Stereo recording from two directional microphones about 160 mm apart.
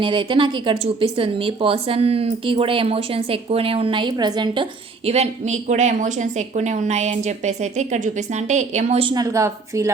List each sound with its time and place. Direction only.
0.0 s speech: 30° right (ahead or behind)
5.0 s a woman's voice: 40° right (ahead or behind)
9.0 s speech: 20° right (ahead or behind)